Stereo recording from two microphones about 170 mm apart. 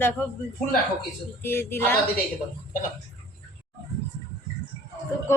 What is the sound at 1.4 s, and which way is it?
Speech, 15° left (ahead or behind).